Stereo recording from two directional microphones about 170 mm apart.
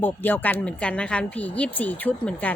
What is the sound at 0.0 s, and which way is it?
Speech, 10° left (ahead or behind).